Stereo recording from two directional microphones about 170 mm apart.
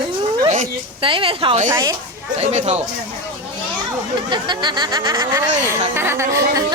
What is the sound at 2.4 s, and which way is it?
Speech, 40° right (ahead or behind).